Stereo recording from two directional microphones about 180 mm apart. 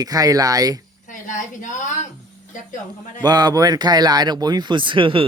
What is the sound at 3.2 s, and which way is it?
Speech, 20° right (ahead or behind).